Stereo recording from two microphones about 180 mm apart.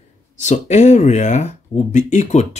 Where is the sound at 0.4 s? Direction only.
40° left (ahead or behind).